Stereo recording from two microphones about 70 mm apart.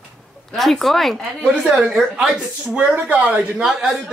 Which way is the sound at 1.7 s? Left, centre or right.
Centre.